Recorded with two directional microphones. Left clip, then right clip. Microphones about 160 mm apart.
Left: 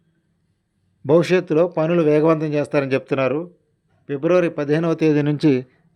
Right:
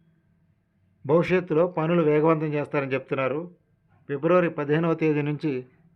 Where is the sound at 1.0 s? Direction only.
35° left (ahead or behind).